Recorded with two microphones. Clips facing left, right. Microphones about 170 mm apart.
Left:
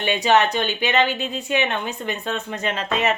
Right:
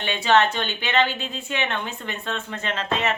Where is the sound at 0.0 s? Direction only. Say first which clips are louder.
Left 2 dB; 15° left (ahead or behind).